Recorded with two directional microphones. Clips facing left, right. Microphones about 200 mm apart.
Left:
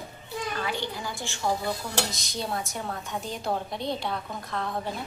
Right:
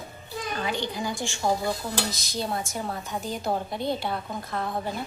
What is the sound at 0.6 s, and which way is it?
A woman's voice, 15° right (ahead or behind).